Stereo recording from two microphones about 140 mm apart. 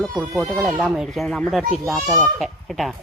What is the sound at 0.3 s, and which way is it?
Speech, centre (ahead or behind).